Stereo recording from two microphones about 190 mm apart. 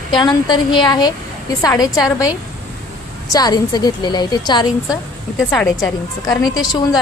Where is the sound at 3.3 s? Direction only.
20° left (ahead or behind).